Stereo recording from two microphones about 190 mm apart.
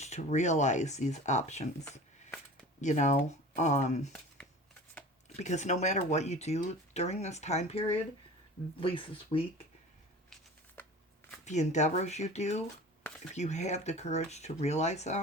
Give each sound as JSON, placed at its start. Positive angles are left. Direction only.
{"t": 0.0, "sound": "speech", "side_deg": 35}
{"t": 2.8, "sound": "speech", "side_deg": 40}
{"t": 5.4, "sound": "speech", "side_deg": 40}
{"t": 11.4, "sound": "speech", "side_deg": 35}